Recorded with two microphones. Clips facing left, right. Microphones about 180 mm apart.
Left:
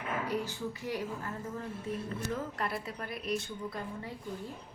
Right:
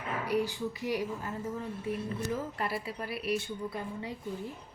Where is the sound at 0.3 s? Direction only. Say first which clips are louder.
Right 4 dB; 10° right (ahead or behind).